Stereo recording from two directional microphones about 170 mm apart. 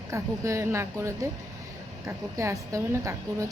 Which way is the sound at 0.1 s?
20° right (ahead or behind).